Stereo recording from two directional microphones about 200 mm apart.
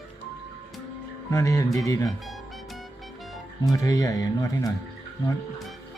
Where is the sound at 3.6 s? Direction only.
15° left (ahead or behind).